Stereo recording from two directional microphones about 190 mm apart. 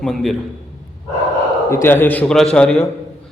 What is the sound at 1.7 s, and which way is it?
A man's voice, 15° left (ahead or behind).